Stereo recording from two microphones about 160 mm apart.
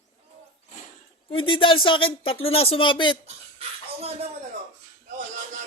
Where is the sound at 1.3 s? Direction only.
35° left (ahead or behind).